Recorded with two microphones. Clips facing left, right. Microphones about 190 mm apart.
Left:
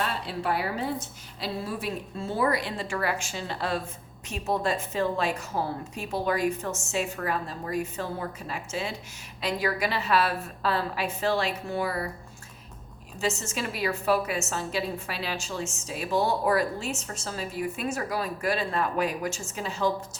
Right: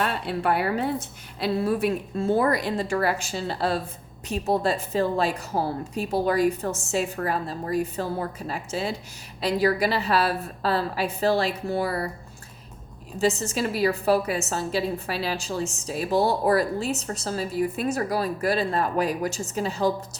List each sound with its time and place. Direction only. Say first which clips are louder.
0.0 s a woman's voice: right 4 dB; 60° right (ahead or behind); by 12.0 s 35° right (ahead or behind)
13.1 s a woman's voice: right 6 dB; 35° right (ahead or behind)